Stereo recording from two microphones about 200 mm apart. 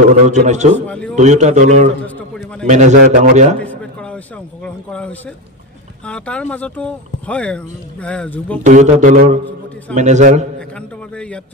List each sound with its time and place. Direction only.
0.3 s a man's voice: 35° right (ahead or behind)
0.7 s speech: 5° left (ahead or behind)
1.1 s a man's voice: 35° right (ahead or behind)
2.0 s a sound: 5° left (ahead or behind)
2.6 s a man's voice: 35° right (ahead or behind)
3.6 s a sound: 5° left (ahead or behind)
4.6 s a man's voice: 5° left (ahead or behind)
8.6 s a man's voice: 35° right (ahead or behind)
11.1 s a man's voice: 5° left (ahead or behind)